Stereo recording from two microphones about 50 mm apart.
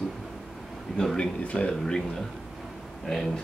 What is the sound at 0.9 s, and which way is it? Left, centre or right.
Speech, centre.